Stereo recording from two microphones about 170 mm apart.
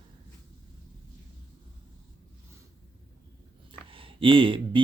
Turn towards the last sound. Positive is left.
turn(degrees=-30)  # may be behind; listen again after turning